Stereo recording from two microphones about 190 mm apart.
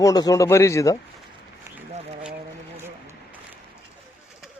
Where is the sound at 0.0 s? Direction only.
20° left (ahead or behind).